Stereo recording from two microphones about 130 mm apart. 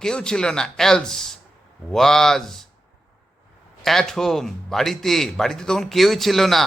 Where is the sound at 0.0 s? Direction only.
5° left (ahead or behind).